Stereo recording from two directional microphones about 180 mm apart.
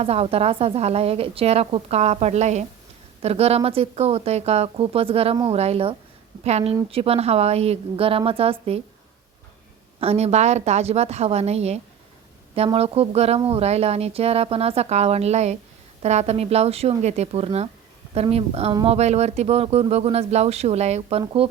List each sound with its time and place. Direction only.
0.0 s speech: 35° right (ahead or behind)
10.0 s speech: 35° right (ahead or behind)